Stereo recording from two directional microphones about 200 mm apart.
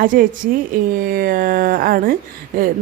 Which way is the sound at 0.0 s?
45° right (ahead or behind).